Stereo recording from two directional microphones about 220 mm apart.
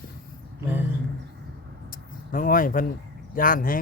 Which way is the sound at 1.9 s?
40° left (ahead or behind).